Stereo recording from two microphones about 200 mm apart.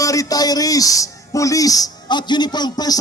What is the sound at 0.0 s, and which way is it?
A man's voice, 15° left (ahead or behind).